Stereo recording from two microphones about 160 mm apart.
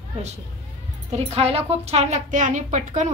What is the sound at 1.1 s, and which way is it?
A woman's voice, 40° right (ahead or behind).